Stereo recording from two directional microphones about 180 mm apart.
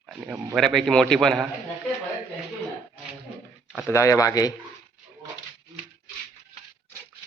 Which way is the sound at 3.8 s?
15° left (ahead or behind).